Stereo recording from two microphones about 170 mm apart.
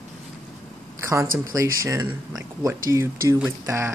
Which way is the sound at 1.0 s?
15° right (ahead or behind).